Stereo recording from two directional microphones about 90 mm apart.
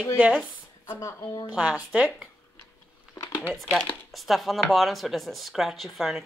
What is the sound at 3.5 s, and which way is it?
Speech, 5° left (ahead or behind).